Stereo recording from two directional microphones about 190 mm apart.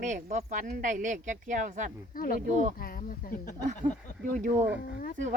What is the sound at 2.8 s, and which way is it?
Speech, 50° left (ahead or behind).